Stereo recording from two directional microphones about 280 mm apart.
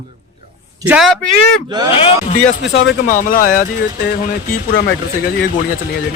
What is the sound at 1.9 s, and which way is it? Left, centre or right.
Speech, left.